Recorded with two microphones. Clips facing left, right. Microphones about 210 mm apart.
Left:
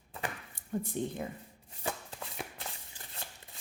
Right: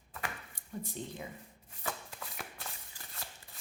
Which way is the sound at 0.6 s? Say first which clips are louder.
Left 3 dB; 55° left (ahead or behind).